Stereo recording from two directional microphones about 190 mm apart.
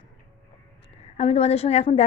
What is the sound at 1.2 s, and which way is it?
Speech, 35° left (ahead or behind).